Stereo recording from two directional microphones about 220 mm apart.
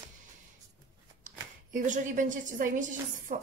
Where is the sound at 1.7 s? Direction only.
35° right (ahead or behind).